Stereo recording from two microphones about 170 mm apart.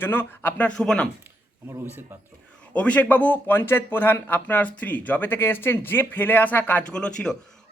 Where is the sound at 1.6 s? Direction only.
15° right (ahead or behind).